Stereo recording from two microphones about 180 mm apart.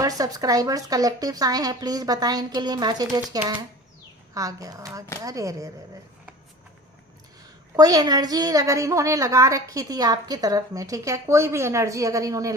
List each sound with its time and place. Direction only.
0.0 s a woman's voice: 20° right (ahead or behind)
7.8 s a woman's voice: 20° right (ahead or behind)